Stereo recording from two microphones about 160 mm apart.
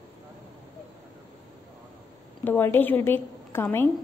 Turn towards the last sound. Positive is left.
turn(degrees=15)  # may be behind; listen again after turning